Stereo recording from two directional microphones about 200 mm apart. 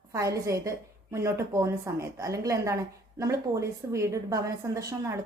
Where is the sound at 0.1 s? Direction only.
15° right (ahead or behind).